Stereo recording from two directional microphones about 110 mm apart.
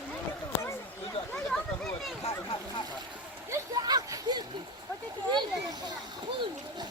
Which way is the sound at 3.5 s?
35° right (ahead or behind).